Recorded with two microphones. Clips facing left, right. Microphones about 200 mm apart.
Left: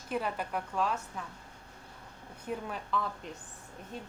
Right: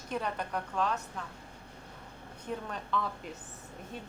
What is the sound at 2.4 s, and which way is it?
Speech, 5° left (ahead or behind).